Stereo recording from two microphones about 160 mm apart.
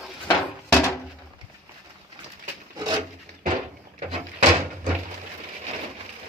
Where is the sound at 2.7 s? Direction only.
25° right (ahead or behind).